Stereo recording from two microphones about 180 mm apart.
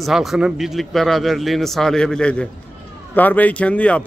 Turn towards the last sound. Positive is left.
turn(degrees=5)  # may be behind; listen again after turning